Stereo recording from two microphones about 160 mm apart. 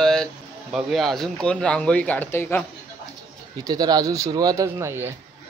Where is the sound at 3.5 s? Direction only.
25° right (ahead or behind).